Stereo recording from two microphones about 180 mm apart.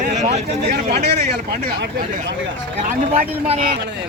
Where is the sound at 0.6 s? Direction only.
60° right (ahead or behind).